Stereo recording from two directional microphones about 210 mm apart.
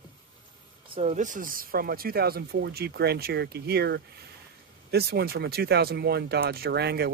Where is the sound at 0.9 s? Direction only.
35° right (ahead or behind).